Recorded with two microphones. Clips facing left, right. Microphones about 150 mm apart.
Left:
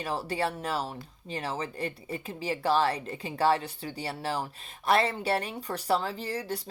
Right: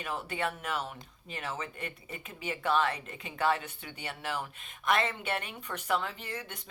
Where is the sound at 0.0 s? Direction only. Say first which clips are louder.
Left 4 dB; 35° left (ahead or behind).